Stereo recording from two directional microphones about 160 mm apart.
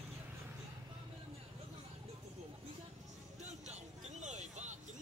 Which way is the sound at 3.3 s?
45° right (ahead or behind).